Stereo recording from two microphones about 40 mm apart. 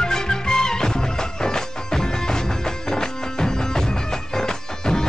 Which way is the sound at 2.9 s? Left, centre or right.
Centre.